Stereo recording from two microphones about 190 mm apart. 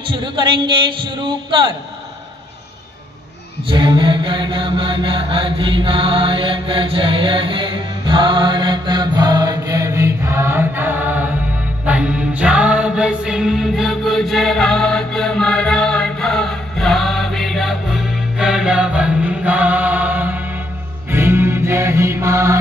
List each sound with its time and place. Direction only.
0.0 s a man's voice: 25° right (ahead or behind)
3.6 s mantra: 25° right (ahead or behind)
11.8 s music: 5° right (ahead or behind)